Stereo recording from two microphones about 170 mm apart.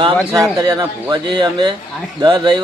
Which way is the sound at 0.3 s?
20° right (ahead or behind).